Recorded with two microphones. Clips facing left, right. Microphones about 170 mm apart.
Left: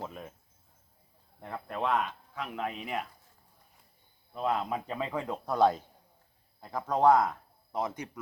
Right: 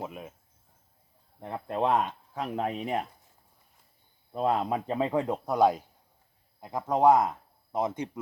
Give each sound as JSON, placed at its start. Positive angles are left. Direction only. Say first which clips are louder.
{"t": 0.0, "sound": "speech", "louder": "right 2 dB", "side_deg": -10}
{"t": 1.4, "sound": "speech", "louder": "right 5 dB", "side_deg": -20}
{"t": 4.4, "sound": "speech", "louder": "right 4 dB", "side_deg": -35}